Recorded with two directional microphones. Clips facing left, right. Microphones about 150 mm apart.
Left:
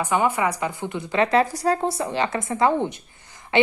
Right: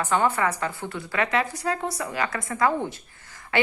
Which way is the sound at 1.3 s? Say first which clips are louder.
Left 6 dB; 35° left (ahead or behind).